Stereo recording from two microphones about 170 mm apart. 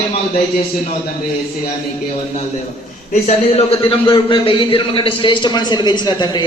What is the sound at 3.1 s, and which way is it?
A man's voice, 40° left (ahead or behind).